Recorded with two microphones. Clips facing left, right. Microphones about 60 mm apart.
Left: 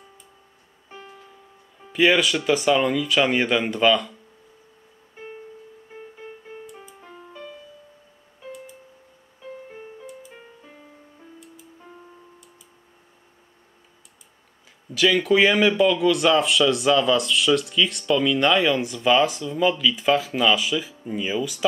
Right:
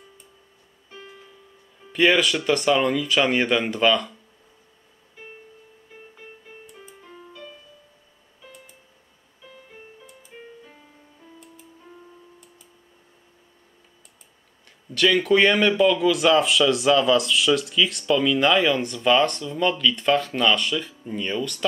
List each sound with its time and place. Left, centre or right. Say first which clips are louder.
1.9 s speech: even; centre
7.0 s music: even; left
15.0 s speech: even; centre